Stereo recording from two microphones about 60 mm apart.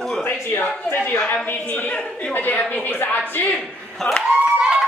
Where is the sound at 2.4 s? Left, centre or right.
Left.